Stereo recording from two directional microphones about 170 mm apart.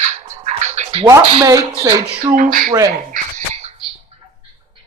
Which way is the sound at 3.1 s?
50° right (ahead or behind).